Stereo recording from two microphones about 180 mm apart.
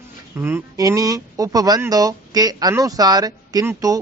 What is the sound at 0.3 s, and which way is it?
A woman's voice, 15° right (ahead or behind).